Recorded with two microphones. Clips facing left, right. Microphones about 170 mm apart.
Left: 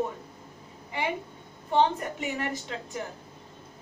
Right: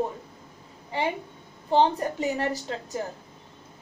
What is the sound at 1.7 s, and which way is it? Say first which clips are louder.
A woman's voice: right 3 dB; 35° right (ahead or behind).